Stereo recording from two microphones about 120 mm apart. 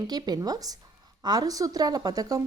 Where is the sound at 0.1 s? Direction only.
35° right (ahead or behind).